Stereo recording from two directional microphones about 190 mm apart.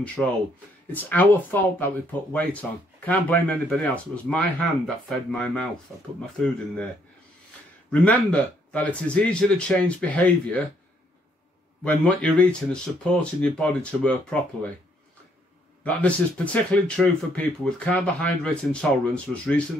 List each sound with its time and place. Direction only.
0.0 s speech: 5° left (ahead or behind)
7.9 s speech: 5° left (ahead or behind)
11.8 s speech: 5° left (ahead or behind)
15.8 s speech: 5° left (ahead or behind)